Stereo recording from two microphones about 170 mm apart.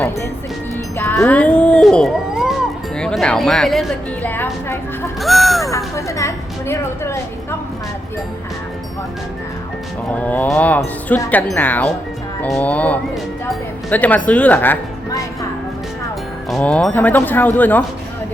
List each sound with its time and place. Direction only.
0.9 s speech: 10° left (ahead or behind)
5.2 s music: centre (ahead or behind)
5.7 s speech: 20° left (ahead or behind)
10.2 s speech: 10° left (ahead or behind)
16.5 s speech: 5° left (ahead or behind)